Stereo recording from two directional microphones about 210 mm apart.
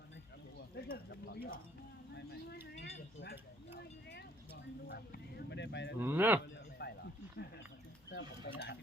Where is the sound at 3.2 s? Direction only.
50° left (ahead or behind).